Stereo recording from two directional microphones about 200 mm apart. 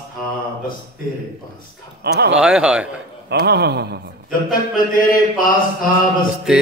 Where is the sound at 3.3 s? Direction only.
55° right (ahead or behind).